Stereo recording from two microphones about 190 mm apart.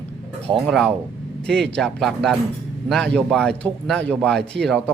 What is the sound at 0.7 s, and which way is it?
Speech, 5° left (ahead or behind).